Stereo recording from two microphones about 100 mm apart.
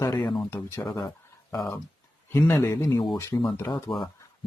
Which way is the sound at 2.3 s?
20° left (ahead or behind).